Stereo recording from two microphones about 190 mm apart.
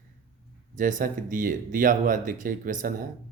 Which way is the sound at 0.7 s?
45° right (ahead or behind).